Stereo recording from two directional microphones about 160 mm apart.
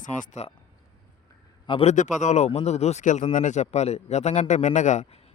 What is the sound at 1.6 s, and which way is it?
Speech, 30° left (ahead or behind).